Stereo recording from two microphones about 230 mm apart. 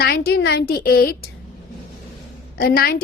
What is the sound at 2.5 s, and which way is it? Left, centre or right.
Speech, left.